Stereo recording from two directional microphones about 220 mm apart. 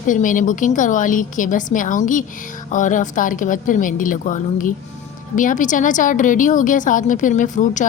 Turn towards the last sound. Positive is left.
turn(degrees=35)  # may be behind; listen again after turning